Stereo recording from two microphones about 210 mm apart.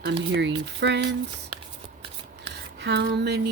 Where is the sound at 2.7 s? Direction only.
55° right (ahead or behind).